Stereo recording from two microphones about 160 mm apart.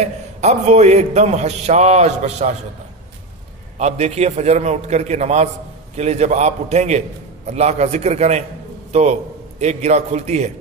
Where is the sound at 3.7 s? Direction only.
45° right (ahead or behind).